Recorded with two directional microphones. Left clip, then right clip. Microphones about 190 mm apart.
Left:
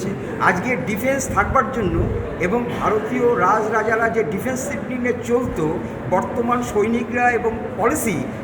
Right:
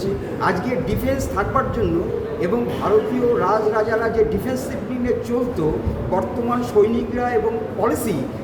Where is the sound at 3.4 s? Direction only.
15° left (ahead or behind).